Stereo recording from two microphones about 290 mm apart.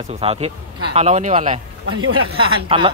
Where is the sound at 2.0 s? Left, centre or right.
Right.